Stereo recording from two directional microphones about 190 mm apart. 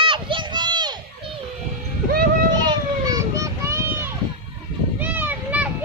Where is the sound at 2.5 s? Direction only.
20° right (ahead or behind).